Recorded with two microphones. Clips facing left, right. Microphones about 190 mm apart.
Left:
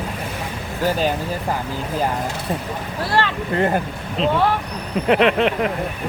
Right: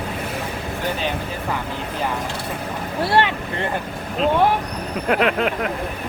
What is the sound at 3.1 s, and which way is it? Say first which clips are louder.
Speech: right 2 dB; 20° right (ahead or behind).